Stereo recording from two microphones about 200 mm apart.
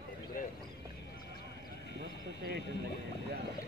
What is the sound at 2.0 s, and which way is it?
Horse, 55° right (ahead or behind).